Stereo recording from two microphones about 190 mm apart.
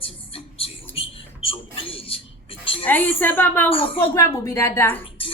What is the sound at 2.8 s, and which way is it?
Speech, 10° left (ahead or behind).